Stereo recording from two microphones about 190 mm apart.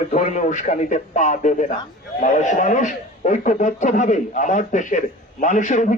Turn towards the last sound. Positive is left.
turn(degrees=40)  # may be behind; listen again after turning